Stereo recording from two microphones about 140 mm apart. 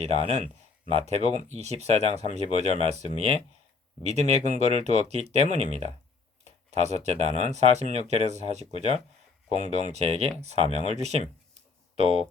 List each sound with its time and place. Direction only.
0.0 s speech: 50° right (ahead or behind)